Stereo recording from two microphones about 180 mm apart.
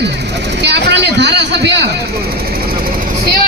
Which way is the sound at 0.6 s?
70° right (ahead or behind).